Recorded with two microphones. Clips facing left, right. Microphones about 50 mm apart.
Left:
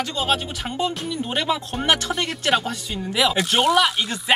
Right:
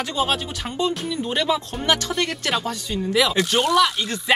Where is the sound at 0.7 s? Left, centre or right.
Centre.